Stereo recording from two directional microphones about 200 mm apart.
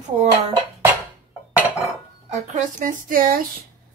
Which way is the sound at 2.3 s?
40° right (ahead or behind).